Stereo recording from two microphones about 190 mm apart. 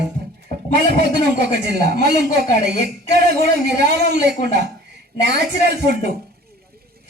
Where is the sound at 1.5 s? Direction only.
60° right (ahead or behind).